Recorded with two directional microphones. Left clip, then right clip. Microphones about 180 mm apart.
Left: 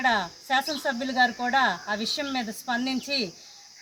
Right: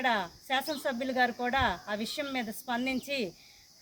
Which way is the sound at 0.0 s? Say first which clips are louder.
Left 5 dB; 40° right (ahead or behind).